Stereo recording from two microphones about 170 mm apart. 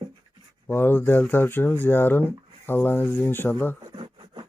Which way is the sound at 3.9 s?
25° right (ahead or behind).